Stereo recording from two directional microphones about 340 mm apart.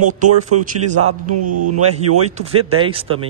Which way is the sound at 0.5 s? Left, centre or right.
Right.